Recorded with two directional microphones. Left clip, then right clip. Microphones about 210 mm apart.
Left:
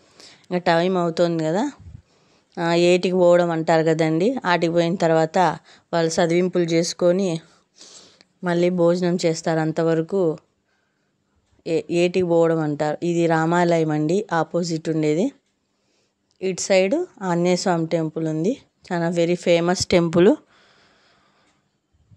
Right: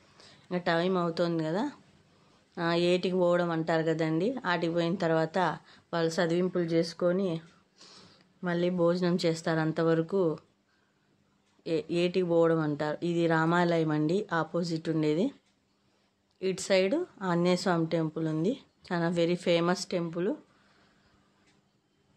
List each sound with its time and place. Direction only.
0.2 s speech: 40° left (ahead or behind)
11.6 s speech: 30° left (ahead or behind)
16.3 s speech: 30° left (ahead or behind); by 20.3 s 50° left (ahead or behind)